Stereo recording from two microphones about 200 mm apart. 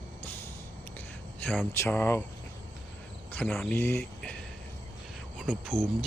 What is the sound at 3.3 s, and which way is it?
Speech, 10° left (ahead or behind).